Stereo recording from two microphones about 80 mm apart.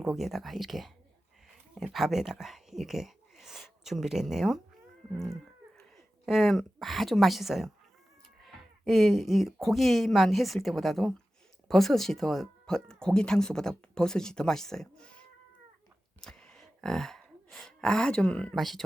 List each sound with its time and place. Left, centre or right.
0.0 s speech: centre
5.1 s a sound: centre
6.2 s speech: centre
16.2 s gasp: centre
18.5 s speech: centre